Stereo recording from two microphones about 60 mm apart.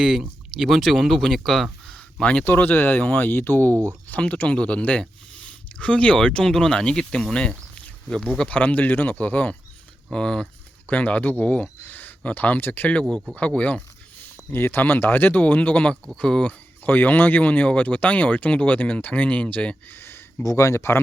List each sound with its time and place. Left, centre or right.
0.0 s speech: centre
2.6 s speech: left
3.7 s speech: right
4.2 s speech: centre
10.8 s speech: left
13.0 s speech: centre
14.5 s speech: left; by 16.5 s centre
16.5 s speech: left
19.9 s a sound: left
20.4 s speech: left